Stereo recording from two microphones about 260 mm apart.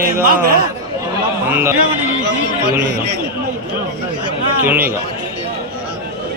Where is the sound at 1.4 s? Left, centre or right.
Centre.